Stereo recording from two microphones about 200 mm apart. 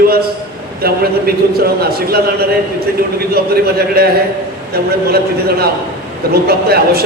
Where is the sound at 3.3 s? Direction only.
50° right (ahead or behind).